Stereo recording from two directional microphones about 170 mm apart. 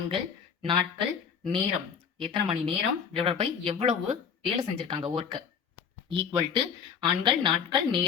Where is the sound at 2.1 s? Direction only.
30° right (ahead or behind).